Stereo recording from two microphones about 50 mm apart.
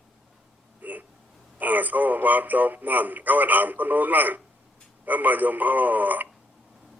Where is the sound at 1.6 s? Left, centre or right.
Right.